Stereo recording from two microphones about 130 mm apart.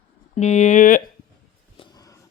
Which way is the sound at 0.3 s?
60° left (ahead or behind).